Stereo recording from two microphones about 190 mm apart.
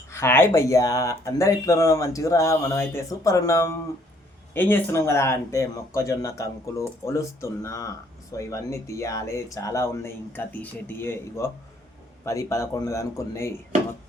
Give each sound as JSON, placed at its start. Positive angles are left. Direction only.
{"t": 0.1, "sound": "speech", "side_deg": 15}